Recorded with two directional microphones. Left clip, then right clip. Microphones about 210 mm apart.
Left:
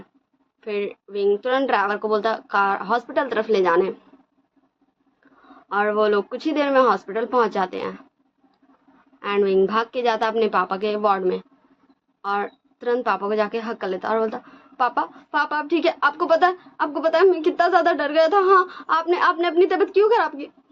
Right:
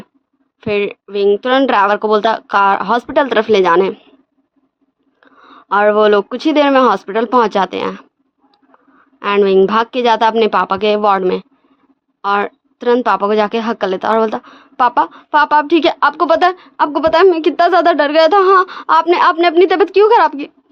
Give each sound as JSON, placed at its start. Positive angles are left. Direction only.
{"t": 0.6, "sound": "a woman's voice", "side_deg": -55}
{"t": 5.5, "sound": "a woman's voice", "side_deg": -55}
{"t": 9.2, "sound": "a woman's voice", "side_deg": -55}